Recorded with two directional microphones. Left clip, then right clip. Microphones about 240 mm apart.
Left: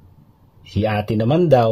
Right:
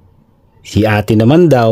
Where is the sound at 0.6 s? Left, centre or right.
Right.